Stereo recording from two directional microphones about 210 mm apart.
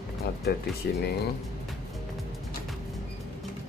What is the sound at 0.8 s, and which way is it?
Speech, 50° left (ahead or behind).